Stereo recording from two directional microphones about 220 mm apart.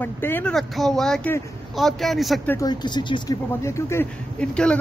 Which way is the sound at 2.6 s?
20° left (ahead or behind).